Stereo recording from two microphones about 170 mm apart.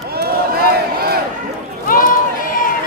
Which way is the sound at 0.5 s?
65° right (ahead or behind).